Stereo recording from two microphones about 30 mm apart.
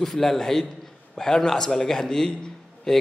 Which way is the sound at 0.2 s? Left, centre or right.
Centre.